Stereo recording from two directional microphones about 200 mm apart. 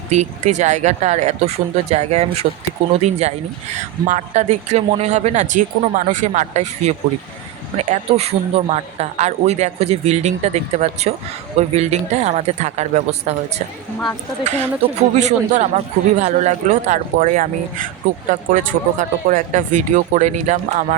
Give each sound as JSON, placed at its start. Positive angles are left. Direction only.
{"t": 0.1, "sound": "speech", "side_deg": -35}
{"t": 14.8, "sound": "speech", "side_deg": -35}